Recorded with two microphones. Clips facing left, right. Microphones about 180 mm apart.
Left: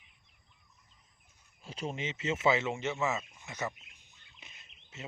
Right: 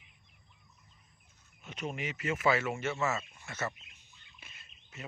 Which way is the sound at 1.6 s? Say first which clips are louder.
Left 1 dB; 30° left (ahead or behind).